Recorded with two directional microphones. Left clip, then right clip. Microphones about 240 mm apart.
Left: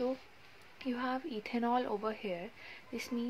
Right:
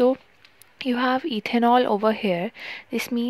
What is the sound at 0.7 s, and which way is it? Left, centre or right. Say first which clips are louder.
Speech: right 14 dB; right.